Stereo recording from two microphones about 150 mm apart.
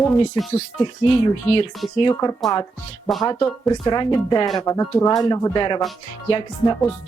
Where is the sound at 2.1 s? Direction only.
25° left (ahead or behind).